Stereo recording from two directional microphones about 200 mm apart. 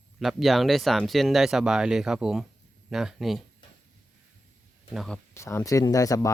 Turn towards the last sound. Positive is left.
turn(degrees=15)  # may be behind; listen again after turning